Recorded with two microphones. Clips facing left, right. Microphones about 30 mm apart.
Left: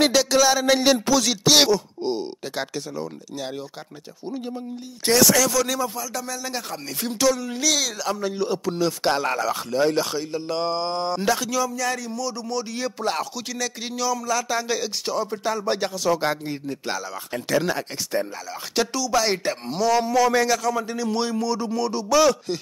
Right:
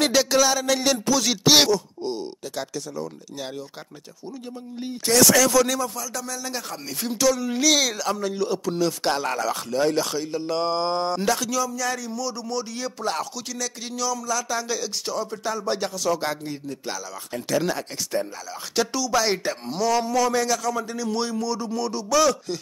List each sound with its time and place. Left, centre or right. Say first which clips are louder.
0.1 s speech: left 1 dB; centre
1.7 s groan: left 2 dB; left
2.5 s speech: left 1 dB; left
5.1 s speech: right 1 dB; centre
5.8 s a man's voice: left 1 dB; centre
7.5 s speech: right 3 dB; centre
8.2 s a man's voice: even; centre